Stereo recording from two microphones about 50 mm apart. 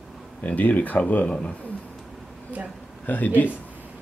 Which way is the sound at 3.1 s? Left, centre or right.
Left.